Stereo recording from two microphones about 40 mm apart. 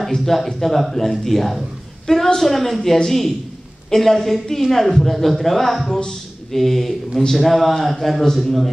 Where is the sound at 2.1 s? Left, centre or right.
Centre.